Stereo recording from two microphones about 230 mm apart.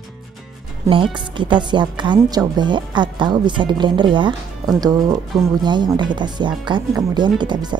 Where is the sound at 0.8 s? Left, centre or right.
Right.